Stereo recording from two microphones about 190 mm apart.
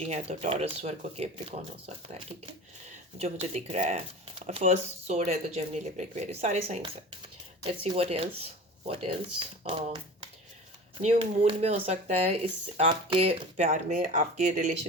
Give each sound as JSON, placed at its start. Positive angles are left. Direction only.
{"t": 0.0, "sound": "speech", "side_deg": -35}
{"t": 3.2, "sound": "speech", "side_deg": -35}